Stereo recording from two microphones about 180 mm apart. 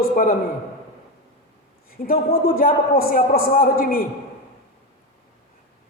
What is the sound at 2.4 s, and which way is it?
A man's voice, 55° left (ahead or behind).